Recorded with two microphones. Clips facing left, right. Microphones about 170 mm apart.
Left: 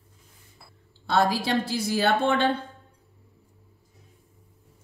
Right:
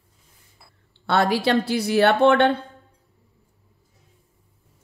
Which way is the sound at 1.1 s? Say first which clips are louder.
Right 3 dB; 65° right (ahead or behind).